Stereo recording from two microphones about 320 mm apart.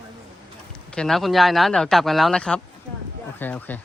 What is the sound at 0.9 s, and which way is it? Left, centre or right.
Speech, centre.